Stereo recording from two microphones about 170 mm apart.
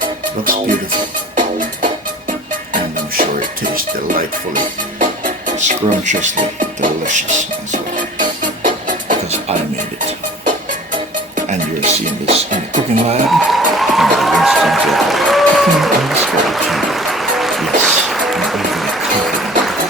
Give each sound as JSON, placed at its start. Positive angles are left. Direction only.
{"t": 0.4, "sound": "speech", "side_deg": -55}
{"t": 1.4, "sound": "music", "side_deg": -50}
{"t": 3.2, "sound": "music", "side_deg": -55}
{"t": 4.5, "sound": "speech", "side_deg": -50}
{"t": 6.8, "sound": "beatboxing", "side_deg": -45}
{"t": 8.2, "sound": "music", "side_deg": -50}
{"t": 11.3, "sound": "music", "side_deg": -45}
{"t": 13.3, "sound": "music", "side_deg": 0}